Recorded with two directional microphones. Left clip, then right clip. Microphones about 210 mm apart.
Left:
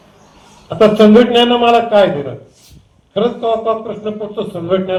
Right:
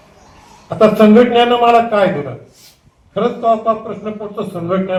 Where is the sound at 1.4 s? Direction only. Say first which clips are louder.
Even; 50° left (ahead or behind).